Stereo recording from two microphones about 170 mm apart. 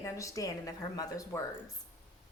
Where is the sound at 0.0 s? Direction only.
20° left (ahead or behind).